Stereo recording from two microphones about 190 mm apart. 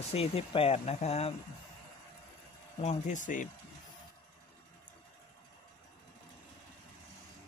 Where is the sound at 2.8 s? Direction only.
40° left (ahead or behind).